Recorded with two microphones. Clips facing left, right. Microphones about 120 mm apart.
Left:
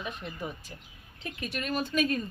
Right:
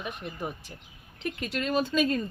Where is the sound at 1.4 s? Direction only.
90° right.